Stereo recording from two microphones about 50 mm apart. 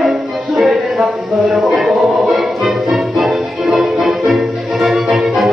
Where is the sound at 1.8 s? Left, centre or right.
Centre.